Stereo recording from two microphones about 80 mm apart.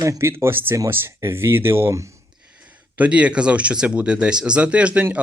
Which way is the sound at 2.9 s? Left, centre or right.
Centre.